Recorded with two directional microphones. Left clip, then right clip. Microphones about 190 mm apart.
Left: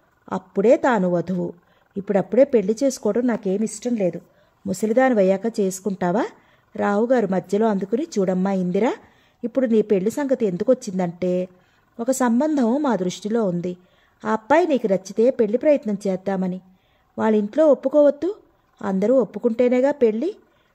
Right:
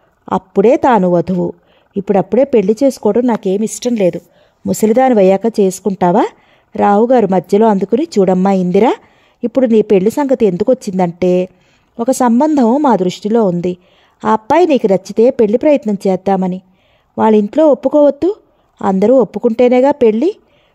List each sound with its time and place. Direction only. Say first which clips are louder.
0.2 s speech: right 10 dB; 45° right (ahead or behind)